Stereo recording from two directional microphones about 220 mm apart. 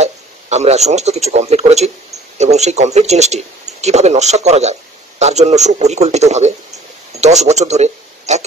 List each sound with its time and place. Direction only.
0.0 s speech: 30° right (ahead or behind)